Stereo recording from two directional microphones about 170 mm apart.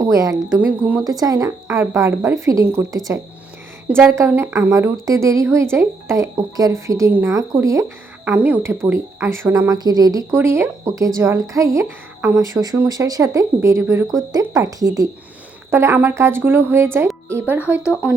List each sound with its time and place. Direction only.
0.0 s speech: 20° right (ahead or behind)